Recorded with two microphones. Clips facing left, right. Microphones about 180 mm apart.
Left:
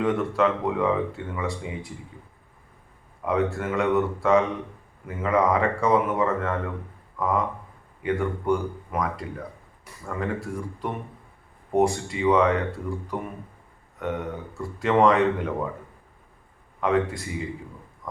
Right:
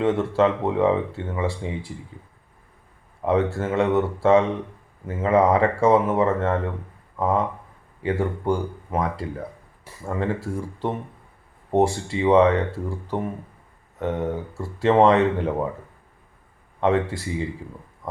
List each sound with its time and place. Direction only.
0.0 s speech: 25° right (ahead or behind)
3.2 s speech: 30° right (ahead or behind)
16.8 s speech: 30° right (ahead or behind)